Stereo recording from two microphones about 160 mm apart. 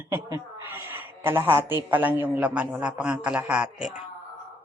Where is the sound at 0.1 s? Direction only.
15° right (ahead or behind).